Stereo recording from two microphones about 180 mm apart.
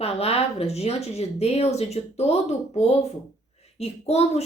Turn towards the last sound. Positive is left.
turn(degrees=35)  # may be behind; listen again after turning